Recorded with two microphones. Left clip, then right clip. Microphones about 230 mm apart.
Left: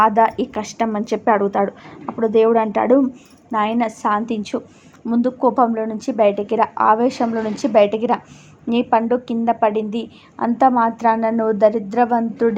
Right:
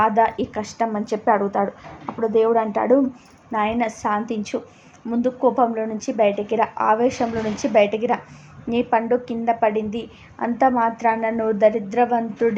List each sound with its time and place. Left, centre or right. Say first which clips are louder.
0.0 s a woman's voice: left 3 dB; centre